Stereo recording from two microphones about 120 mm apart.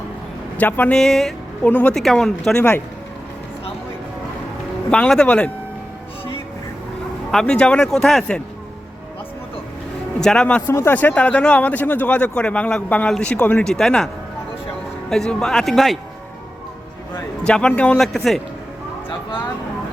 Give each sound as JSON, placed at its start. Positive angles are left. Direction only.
{"t": 0.5, "sound": "speech", "side_deg": 15}
{"t": 4.9, "sound": "speech", "side_deg": 5}
{"t": 7.3, "sound": "speech", "side_deg": 5}
{"t": 10.2, "sound": "speech", "side_deg": 5}
{"t": 10.7, "sound": "speech", "side_deg": 20}
{"t": 15.1, "sound": "speech", "side_deg": 5}
{"t": 17.4, "sound": "speech", "side_deg": 5}